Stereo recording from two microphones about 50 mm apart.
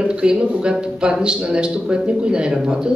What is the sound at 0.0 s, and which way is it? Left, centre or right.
A woman's voice, centre.